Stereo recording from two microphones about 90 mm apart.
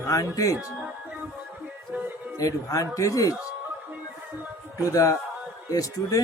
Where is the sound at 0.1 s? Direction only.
40° left (ahead or behind).